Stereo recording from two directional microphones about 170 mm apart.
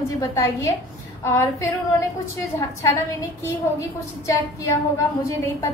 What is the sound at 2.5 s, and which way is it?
A woman's voice, 20° left (ahead or behind).